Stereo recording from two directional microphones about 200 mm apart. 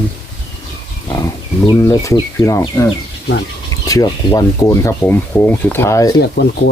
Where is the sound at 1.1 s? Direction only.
15° left (ahead or behind).